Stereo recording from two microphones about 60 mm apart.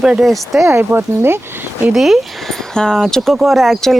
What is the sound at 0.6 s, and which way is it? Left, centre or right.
Speech, right.